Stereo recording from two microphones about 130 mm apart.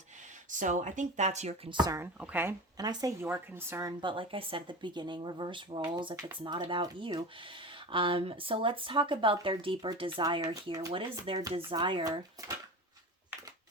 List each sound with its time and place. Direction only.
0.5 s speech: 70° right (ahead or behind)
1.7 s speech: 35° right (ahead or behind)
2.0 s speech: 15° right (ahead or behind)
2.7 s speech: 30° right (ahead or behind)
4.0 s speech: 40° right (ahead or behind)
7.4 s speech: 40° right (ahead or behind)
10.4 s speech: 30° right (ahead or behind)